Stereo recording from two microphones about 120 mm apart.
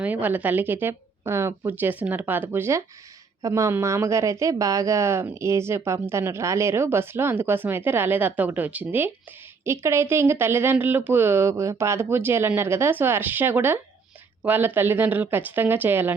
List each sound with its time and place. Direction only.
0.0 s a woman's voice: 15° right (ahead or behind)